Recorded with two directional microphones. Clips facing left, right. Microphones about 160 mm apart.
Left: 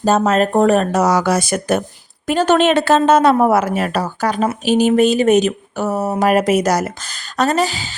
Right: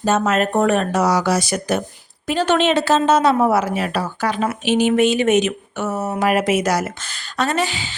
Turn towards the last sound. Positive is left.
turn(degrees=40)  # may be behind; listen again after turning